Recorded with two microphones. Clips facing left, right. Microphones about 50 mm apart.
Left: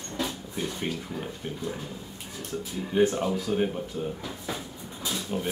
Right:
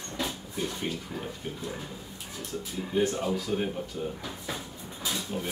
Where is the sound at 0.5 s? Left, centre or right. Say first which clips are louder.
Left 1 dB; centre.